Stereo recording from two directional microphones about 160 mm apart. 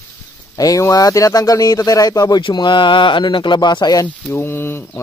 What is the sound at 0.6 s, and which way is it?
Speech, 20° left (ahead or behind).